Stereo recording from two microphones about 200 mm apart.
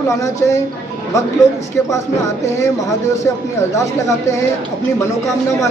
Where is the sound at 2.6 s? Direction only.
15° left (ahead or behind).